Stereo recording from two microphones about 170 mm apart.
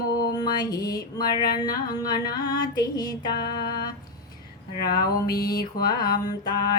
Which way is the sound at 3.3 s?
70° left (ahead or behind).